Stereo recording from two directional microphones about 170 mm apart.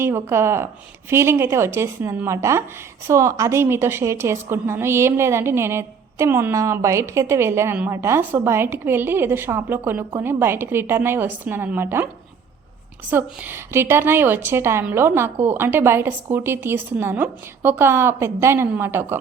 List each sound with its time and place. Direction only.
0.0 s a woman's voice: 15° right (ahead or behind)
13.1 s a woman's voice: 15° right (ahead or behind)